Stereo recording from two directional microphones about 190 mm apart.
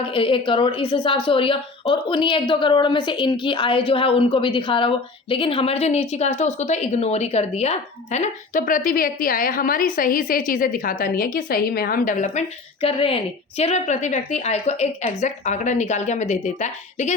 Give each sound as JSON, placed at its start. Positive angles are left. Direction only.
{"t": 0.1, "sound": "a woman's voice", "side_deg": 25}
{"t": 12.8, "sound": "a woman's voice", "side_deg": 30}